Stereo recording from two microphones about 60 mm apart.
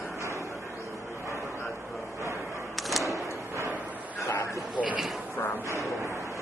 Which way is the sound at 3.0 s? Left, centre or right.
Right.